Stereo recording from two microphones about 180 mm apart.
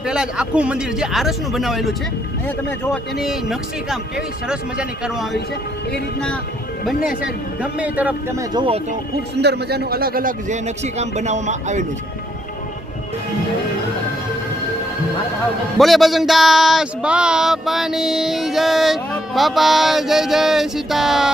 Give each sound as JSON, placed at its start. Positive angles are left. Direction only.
{"t": 0.0, "sound": "speech", "side_deg": -5}
{"t": 6.8, "sound": "a man's voice", "side_deg": -5}
{"t": 8.5, "sound": "speech", "side_deg": -30}
{"t": 9.4, "sound": "speech", "side_deg": -65}
{"t": 15.8, "sound": "speech", "side_deg": 0}